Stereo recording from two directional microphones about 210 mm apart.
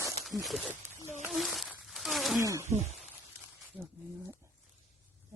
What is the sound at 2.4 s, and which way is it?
Speech, 15° right (ahead or behind).